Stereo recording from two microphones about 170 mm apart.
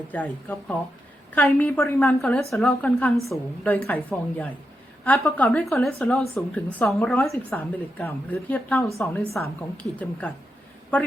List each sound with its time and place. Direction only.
0.1 s a woman's voice: 10° left (ahead or behind)
2.2 s a woman's voice: centre (ahead or behind)
7.2 s a woman's voice: 15° left (ahead or behind)